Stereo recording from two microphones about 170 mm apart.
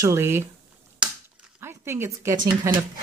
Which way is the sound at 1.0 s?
5° right (ahead or behind).